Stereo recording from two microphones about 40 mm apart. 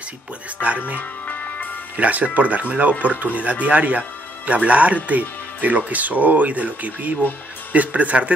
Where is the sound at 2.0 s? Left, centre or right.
Right.